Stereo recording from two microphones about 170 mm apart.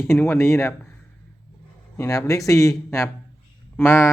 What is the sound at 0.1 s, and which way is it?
Speech, 15° left (ahead or behind).